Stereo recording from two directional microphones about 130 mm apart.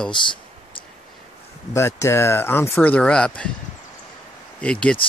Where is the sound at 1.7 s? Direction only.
20° left (ahead or behind).